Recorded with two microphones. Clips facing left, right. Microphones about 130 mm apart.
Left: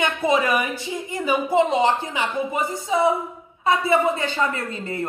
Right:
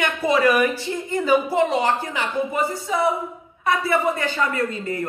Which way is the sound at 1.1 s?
15° left (ahead or behind).